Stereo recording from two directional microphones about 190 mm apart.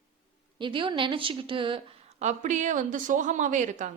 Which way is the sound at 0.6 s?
25° right (ahead or behind).